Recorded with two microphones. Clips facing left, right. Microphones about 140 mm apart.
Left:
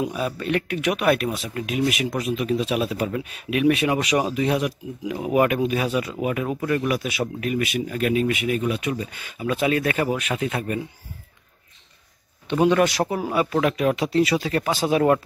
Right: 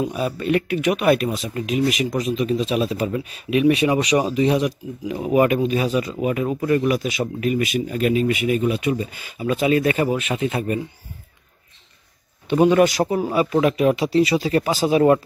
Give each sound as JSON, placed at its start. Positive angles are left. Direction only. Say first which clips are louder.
{"t": 0.1, "sound": "speech", "louder": "right 3 dB", "side_deg": 0}
{"t": 12.4, "sound": "speech", "louder": "right 3 dB", "side_deg": -5}